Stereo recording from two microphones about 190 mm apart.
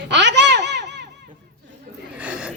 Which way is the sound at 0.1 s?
70° right (ahead or behind).